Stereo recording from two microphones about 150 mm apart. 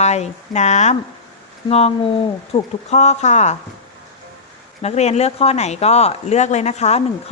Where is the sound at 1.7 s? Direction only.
40° left (ahead or behind).